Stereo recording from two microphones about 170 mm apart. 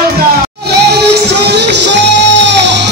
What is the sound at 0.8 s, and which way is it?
Music, 80° right.